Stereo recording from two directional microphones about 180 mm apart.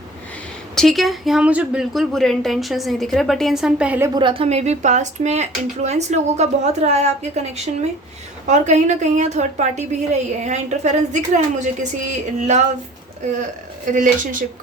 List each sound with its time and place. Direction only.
0.8 s speech: centre (ahead or behind)
4.1 s speech: 25° right (ahead or behind)
13.9 s speech: 45° right (ahead or behind)